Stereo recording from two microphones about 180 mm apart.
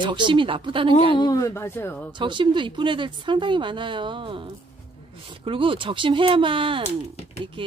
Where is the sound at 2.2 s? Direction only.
25° right (ahead or behind).